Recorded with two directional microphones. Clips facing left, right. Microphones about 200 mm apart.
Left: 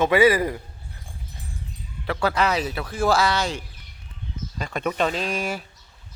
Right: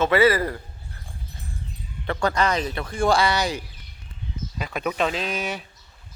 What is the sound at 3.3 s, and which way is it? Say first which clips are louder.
Speech: right 1 dB; 15° right (ahead or behind).